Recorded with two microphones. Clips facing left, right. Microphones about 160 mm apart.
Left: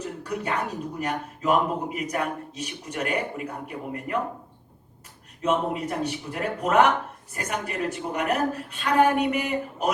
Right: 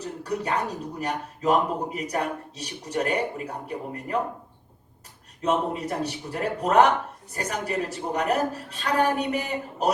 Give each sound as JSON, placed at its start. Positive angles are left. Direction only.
{"t": 0.0, "sound": "a man's voice", "side_deg": -35}
{"t": 5.4, "sound": "a man's voice", "side_deg": -35}